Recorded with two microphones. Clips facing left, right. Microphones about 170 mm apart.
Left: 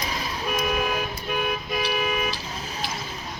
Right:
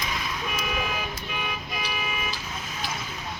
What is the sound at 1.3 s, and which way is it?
Toot, 50° left (ahead or behind).